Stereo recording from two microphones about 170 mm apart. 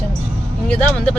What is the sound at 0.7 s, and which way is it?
Speech, 5° left (ahead or behind).